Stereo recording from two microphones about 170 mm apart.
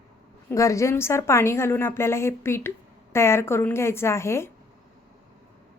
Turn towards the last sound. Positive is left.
turn(degrees=15)  # may be behind; listen again after turning